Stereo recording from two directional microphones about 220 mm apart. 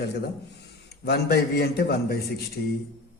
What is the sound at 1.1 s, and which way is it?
A man's voice, 45° left (ahead or behind).